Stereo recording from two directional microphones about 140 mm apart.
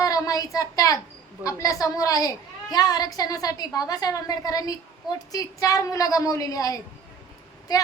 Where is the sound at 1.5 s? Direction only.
25° left (ahead or behind).